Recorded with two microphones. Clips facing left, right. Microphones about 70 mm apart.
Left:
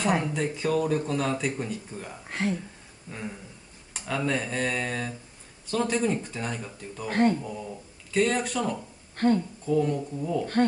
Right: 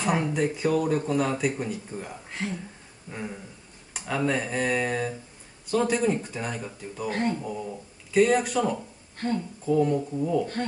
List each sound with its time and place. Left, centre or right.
0.0 s speech: centre
2.4 s speech: left
3.1 s speech: centre
7.1 s speech: left
7.4 s speech: centre
9.2 s speech: left
9.7 s speech: centre
10.4 s speech: left